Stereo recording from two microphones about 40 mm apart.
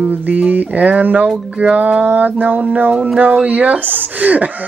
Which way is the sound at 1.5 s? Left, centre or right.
Right.